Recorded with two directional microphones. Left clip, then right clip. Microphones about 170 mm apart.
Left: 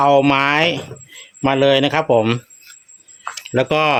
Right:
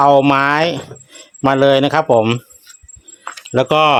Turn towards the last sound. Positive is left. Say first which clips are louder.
# right 4 dB
turn(degrees=-35)  # may be behind; listen again after turning